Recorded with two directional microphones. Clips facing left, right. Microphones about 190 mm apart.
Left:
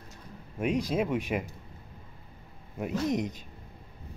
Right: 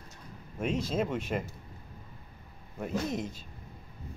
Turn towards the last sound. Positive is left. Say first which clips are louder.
# left 4 dB
turn(degrees=15)  # may be behind; listen again after turning